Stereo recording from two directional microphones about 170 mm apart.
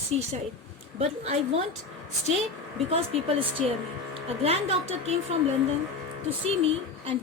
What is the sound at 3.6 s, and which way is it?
A woman's voice, 40° right (ahead or behind).